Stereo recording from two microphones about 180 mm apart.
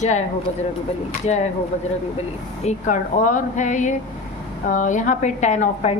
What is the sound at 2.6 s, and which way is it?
A woman's voice, 40° left (ahead or behind).